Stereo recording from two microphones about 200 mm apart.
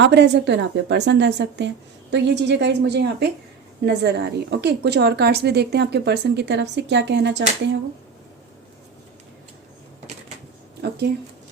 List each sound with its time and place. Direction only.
0.0 s a woman's voice: 60° right (ahead or behind)
10.8 s speech: 55° right (ahead or behind)